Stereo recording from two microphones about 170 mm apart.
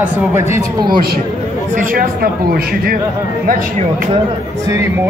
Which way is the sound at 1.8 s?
55° right (ahead or behind).